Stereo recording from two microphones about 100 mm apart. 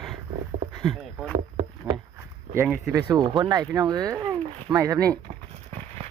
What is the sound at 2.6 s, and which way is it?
Speech, 5° right (ahead or behind).